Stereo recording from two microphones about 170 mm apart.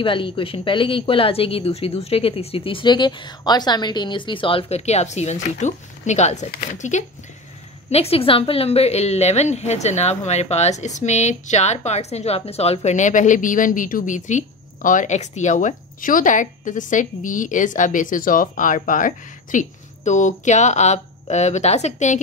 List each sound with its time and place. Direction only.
0.0 s a woman's voice: 30° left (ahead or behind)